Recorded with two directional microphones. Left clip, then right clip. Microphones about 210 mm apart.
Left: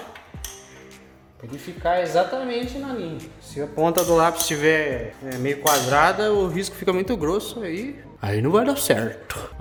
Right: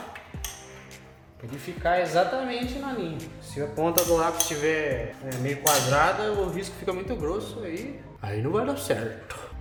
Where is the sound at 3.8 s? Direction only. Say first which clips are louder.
Left 5 dB; 45° left (ahead or behind).